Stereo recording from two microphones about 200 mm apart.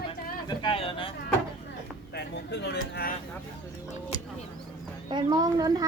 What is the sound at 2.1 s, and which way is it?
Speech, 60° left (ahead or behind).